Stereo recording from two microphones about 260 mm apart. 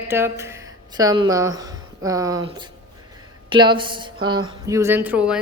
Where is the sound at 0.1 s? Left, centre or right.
Centre.